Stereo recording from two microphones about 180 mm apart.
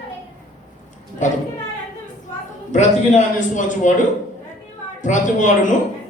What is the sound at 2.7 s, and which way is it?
A man's voice, 40° left (ahead or behind).